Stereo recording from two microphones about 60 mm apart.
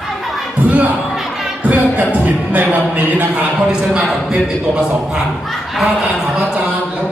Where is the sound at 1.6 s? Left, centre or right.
Right.